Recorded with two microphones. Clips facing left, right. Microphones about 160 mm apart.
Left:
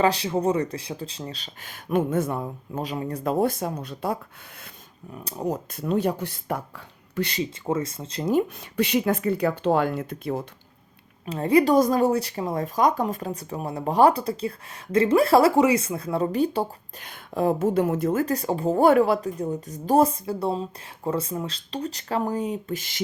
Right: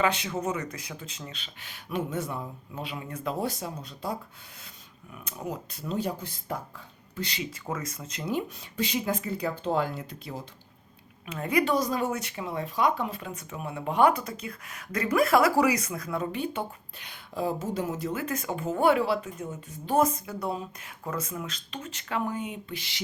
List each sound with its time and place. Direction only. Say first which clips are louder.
0.0 s speech: left 6 dB; 35° left (ahead or behind)
3.3 s speech: left 8 dB; 55° left (ahead or behind)
5.1 s speech: left 8 dB; 35° left (ahead or behind)
5.7 s speech: left 6 dB; 60° left (ahead or behind)
7.6 s speech: left 8 dB; 30° left (ahead or behind)
8.3 s speech: left 8 dB; 55° left (ahead or behind)
11.3 s speech: left 7 dB; 30° left (ahead or behind)
11.7 s speech: left 8 dB; 45° left (ahead or behind)